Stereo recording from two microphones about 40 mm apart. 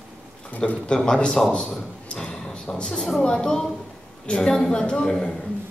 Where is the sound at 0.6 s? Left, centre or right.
Left.